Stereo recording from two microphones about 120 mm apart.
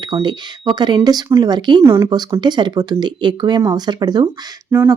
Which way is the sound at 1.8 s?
25° right (ahead or behind).